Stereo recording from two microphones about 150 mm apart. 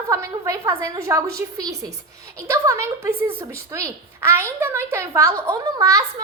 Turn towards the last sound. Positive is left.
turn(degrees=-25)  # may be behind; listen again after turning